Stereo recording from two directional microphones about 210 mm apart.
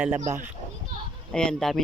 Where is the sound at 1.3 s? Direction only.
5° left (ahead or behind).